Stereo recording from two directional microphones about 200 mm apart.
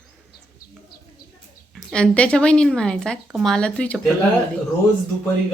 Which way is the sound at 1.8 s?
Centre (ahead or behind).